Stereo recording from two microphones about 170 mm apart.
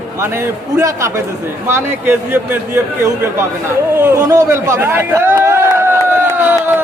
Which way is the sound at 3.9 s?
15° right (ahead or behind).